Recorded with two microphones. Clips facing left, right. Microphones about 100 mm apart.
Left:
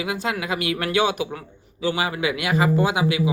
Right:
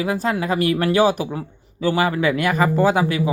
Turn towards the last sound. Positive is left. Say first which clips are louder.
# right 3 dB
turn(degrees=-40)  # may be behind; listen again after turning